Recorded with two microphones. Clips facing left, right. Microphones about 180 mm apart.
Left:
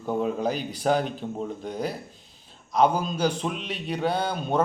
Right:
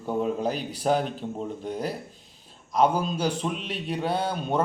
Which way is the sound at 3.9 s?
5° right (ahead or behind).